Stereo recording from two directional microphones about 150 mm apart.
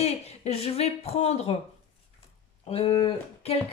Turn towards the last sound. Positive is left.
turn(degrees=35)  # may be behind; listen again after turning